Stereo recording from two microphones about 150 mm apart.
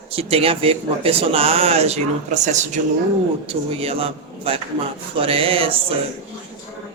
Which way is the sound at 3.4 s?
40° right (ahead or behind).